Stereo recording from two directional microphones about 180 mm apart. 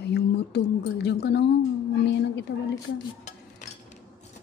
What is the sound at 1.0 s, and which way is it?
A woman's voice, 65° left (ahead or behind).